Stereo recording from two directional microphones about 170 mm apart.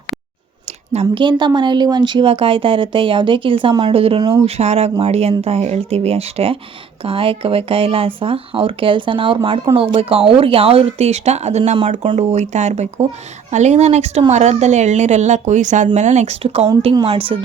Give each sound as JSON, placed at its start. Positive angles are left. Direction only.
{"t": 0.9, "sound": "speech", "side_deg": -30}